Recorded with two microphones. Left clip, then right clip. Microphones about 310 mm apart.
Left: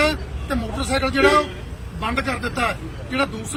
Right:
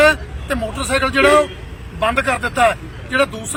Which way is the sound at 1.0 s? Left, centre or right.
Centre.